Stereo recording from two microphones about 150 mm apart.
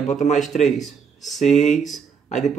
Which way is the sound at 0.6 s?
Centre (ahead or behind).